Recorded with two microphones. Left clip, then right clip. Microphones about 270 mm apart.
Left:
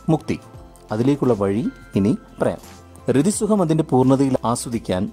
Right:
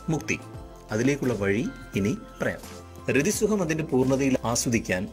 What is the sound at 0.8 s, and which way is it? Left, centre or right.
Speech, centre.